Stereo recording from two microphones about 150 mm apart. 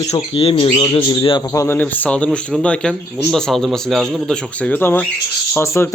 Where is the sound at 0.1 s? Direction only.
40° left (ahead or behind).